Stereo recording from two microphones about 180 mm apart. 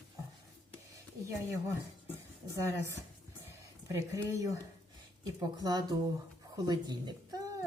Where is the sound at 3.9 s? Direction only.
15° right (ahead or behind).